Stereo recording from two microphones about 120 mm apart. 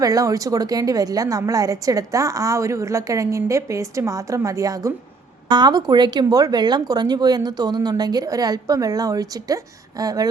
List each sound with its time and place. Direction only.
0.0 s a woman's voice: 30° right (ahead or behind)